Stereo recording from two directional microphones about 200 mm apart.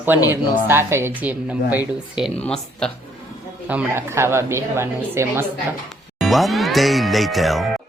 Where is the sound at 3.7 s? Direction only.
10° right (ahead or behind).